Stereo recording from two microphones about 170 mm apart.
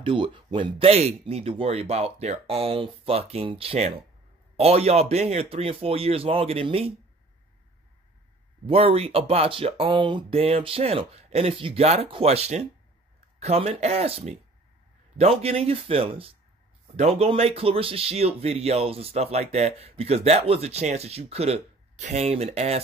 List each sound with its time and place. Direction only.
0.0 s speech: 30° right (ahead or behind)
8.6 s speech: 35° right (ahead or behind)